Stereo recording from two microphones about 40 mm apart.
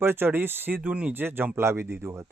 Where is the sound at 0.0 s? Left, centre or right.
Right.